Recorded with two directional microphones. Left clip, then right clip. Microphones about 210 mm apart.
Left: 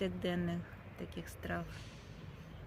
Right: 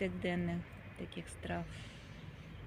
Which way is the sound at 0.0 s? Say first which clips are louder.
Even; 10° left (ahead or behind).